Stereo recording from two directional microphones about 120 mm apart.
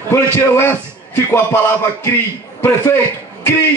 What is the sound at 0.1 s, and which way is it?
Speech, 20° left (ahead or behind).